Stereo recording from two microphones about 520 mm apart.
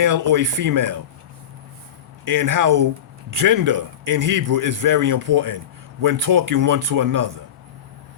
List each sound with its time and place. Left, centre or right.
0.0 s a man's voice: right
2.2 s a man's voice: right